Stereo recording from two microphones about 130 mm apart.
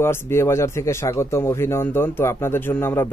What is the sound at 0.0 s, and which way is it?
A man's voice, 20° left (ahead or behind).